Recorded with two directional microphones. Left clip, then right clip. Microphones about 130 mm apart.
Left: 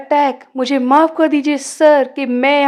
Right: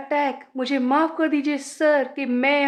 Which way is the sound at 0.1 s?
50° left (ahead or behind).